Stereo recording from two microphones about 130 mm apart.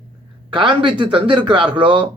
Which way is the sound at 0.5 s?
40° right (ahead or behind).